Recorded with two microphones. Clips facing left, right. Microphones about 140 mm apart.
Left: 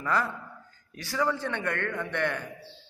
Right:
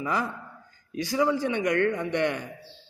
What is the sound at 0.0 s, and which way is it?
A man's voice, 15° right (ahead or behind).